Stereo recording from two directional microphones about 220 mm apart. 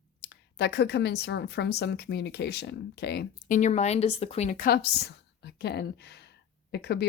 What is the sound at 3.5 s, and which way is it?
Speech, 30° left (ahead or behind).